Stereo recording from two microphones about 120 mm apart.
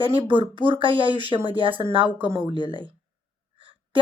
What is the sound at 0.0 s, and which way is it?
Speech, 50° right (ahead or behind).